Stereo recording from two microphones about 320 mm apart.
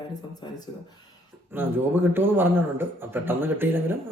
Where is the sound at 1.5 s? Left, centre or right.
Centre.